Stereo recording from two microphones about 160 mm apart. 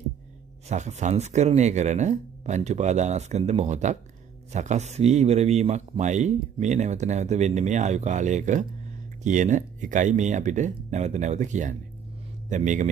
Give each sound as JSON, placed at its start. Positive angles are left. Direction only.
{"t": 0.7, "sound": "speech", "side_deg": -45}